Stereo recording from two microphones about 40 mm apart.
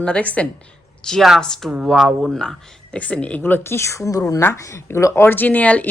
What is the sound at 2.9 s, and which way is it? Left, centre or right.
Speech, left.